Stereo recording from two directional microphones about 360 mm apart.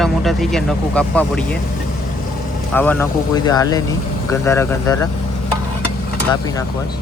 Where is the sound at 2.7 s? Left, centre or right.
Centre.